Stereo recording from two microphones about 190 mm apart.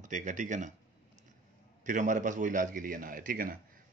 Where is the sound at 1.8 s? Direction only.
40° right (ahead or behind).